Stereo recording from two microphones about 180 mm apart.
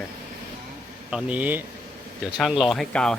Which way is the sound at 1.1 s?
5° right (ahead or behind).